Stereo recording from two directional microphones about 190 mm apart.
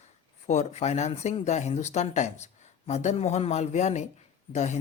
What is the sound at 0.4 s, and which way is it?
Speech, 35° left (ahead or behind).